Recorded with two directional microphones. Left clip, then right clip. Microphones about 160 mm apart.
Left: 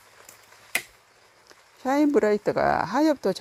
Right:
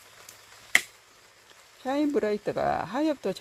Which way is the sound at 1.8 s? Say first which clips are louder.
Left 5 dB; 30° left (ahead or behind).